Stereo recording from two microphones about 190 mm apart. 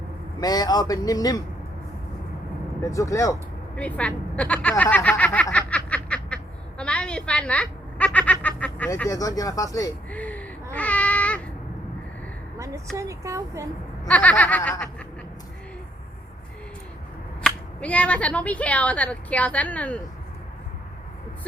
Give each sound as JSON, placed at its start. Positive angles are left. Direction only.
{"t": 0.3, "sound": "speech", "side_deg": 20}
{"t": 2.8, "sound": "speech", "side_deg": 15}
{"t": 10.1, "sound": "a sound", "side_deg": 10}
{"t": 12.5, "sound": "speech", "side_deg": -15}
{"t": 14.1, "sound": "speech", "side_deg": 5}
{"t": 17.4, "sound": "speech", "side_deg": 5}